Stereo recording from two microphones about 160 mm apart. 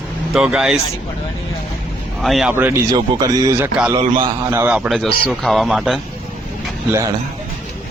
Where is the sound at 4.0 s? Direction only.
30° right (ahead or behind).